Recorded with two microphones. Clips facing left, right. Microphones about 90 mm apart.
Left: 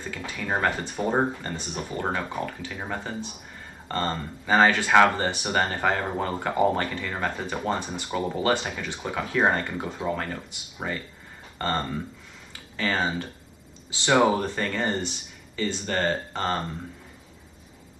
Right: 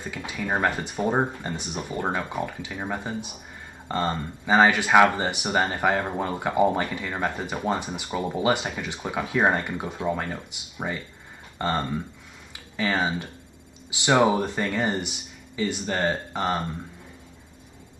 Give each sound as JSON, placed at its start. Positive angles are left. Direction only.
{"t": 0.0, "sound": "speech", "side_deg": -15}
{"t": 11.5, "sound": "a sound", "side_deg": -10}
{"t": 12.7, "sound": "speech", "side_deg": -15}